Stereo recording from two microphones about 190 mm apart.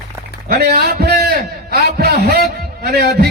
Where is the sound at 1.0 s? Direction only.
55° right (ahead or behind).